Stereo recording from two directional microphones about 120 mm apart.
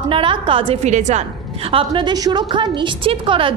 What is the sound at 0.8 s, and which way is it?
Speech, 80° right.